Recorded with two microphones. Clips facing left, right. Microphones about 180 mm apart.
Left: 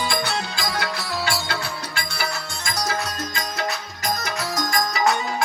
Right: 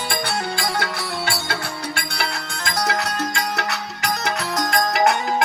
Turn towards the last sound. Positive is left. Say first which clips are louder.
# right 3 dB
turn(degrees=-60)  # may be behind; listen again after turning